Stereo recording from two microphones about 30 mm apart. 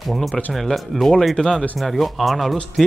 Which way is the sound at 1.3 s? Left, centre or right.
Centre.